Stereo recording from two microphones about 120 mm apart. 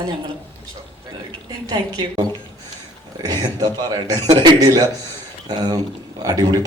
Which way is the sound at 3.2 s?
35° right (ahead or behind).